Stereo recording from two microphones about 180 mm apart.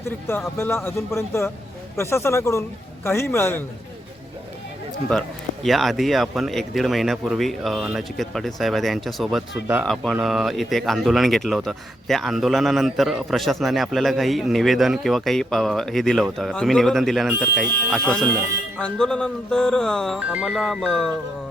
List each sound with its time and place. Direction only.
0.3 s a man's voice: 15° left (ahead or behind)
5.6 s speech: centre (ahead or behind)